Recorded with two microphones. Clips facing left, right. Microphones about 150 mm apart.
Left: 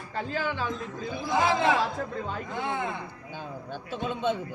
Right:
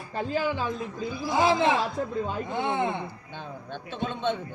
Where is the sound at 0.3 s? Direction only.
15° right (ahead or behind).